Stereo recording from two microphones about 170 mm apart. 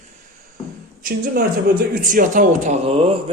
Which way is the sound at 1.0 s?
60° right (ahead or behind).